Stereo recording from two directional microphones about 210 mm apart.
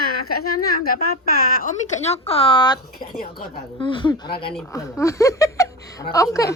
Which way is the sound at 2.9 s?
45° left (ahead or behind).